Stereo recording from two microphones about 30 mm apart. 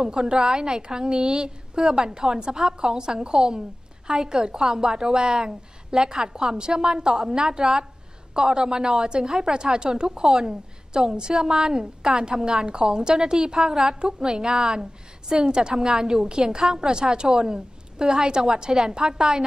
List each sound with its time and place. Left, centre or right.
0.0 s a woman's voice: right
13.6 s a woman's voice: centre
13.8 s a woman's voice: right
15.7 s a woman's voice: centre